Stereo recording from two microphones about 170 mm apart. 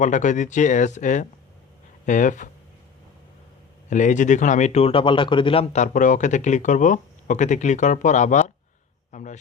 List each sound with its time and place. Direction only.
0.0 s speech: 45° left (ahead or behind)
3.8 s speech: 45° left (ahead or behind)
9.1 s a sound: 45° left (ahead or behind)